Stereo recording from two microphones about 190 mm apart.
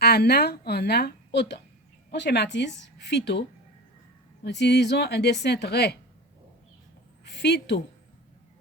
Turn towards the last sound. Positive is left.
turn(degrees=65)  # may be behind; listen again after turning